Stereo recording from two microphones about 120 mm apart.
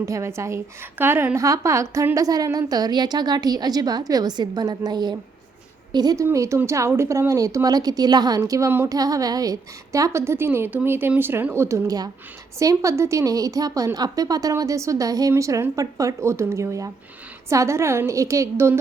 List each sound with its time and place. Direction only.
0.0 s a woman's voice: 25° right (ahead or behind)